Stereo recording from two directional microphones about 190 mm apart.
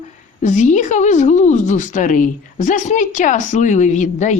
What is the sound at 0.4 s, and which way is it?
A woman's voice, 40° left (ahead or behind).